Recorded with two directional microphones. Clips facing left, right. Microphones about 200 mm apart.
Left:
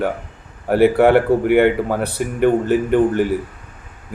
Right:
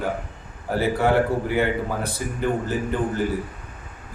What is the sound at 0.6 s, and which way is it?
Speech, 65° left (ahead or behind).